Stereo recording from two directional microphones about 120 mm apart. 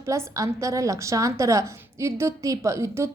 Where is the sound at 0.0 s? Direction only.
25° right (ahead or behind).